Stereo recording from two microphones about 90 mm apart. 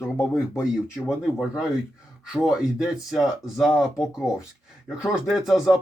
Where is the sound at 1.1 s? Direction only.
5° right (ahead or behind).